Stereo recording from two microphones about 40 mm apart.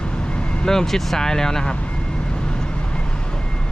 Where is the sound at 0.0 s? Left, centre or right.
Left.